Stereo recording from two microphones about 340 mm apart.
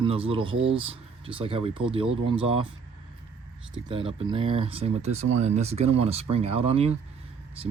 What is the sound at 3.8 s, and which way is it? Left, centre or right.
Speech, centre.